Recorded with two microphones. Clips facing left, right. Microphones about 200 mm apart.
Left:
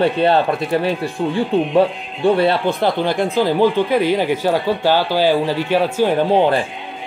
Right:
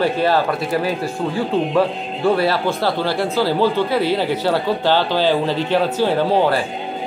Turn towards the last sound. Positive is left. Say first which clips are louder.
# left 2 dB
turn(degrees=15)  # may be behind; listen again after turning